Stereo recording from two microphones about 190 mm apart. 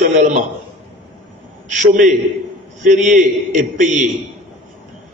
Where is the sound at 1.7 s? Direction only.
40° right (ahead or behind).